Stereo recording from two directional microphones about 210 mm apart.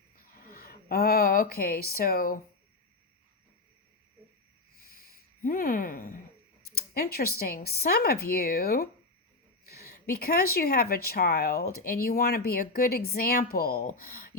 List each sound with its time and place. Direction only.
0.4 s speech: 45° left (ahead or behind)
4.9 s a sound: 45° left (ahead or behind)
6.7 s a woman's voice: 45° left (ahead or behind)